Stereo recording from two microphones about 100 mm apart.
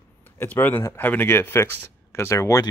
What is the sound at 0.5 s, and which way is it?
Speech, 15° left (ahead or behind).